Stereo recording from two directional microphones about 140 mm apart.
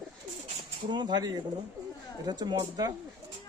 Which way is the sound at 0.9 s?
30° right (ahead or behind).